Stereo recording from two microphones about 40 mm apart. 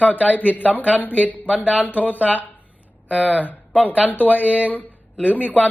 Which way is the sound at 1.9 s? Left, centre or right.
Left.